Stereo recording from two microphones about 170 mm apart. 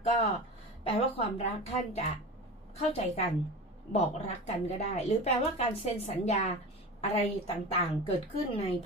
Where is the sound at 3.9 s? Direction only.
40° left (ahead or behind).